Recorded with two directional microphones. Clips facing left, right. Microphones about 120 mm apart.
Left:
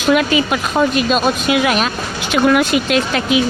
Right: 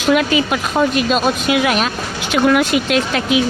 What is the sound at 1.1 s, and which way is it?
Speech, 40° left (ahead or behind).